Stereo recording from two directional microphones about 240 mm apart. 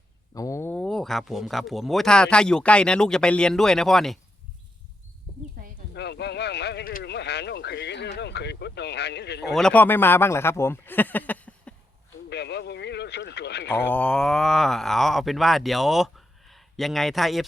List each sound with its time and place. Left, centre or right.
0.3 s speech: centre
5.9 s speech: left
9.5 s speech: centre
12.3 s a sound: left
13.7 s speech: centre